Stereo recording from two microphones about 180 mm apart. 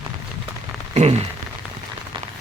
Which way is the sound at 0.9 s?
35° right (ahead or behind).